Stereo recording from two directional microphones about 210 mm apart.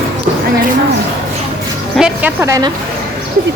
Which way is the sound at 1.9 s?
5° right (ahead or behind).